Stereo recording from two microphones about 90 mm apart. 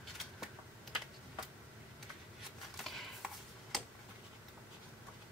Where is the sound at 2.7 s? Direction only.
Centre (ahead or behind).